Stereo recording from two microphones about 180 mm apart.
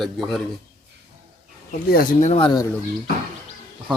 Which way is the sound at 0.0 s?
Centre (ahead or behind).